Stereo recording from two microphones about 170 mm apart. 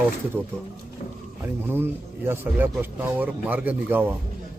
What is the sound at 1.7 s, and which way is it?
Speech, 15° right (ahead or behind).